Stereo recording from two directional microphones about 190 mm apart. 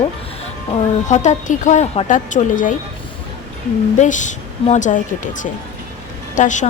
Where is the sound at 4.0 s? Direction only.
40° left (ahead or behind).